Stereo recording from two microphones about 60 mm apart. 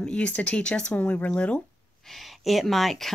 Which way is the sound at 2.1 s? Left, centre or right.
Centre.